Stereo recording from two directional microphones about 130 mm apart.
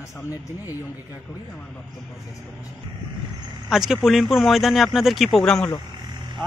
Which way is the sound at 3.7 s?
5° right (ahead or behind).